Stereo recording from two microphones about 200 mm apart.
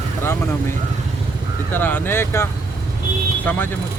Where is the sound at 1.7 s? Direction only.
10° left (ahead or behind).